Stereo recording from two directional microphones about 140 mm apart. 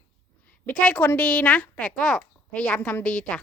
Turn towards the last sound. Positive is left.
turn(degrees=10)  # may be behind; listen again after turning